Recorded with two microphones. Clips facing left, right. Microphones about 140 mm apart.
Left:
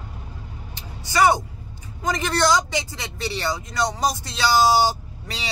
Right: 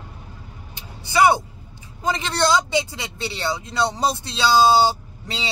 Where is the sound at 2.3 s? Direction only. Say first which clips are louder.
Right 1 dB; 20° right (ahead or behind).